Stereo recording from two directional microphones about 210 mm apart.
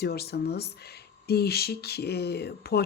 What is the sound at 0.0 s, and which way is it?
Speech, 50° left (ahead or behind).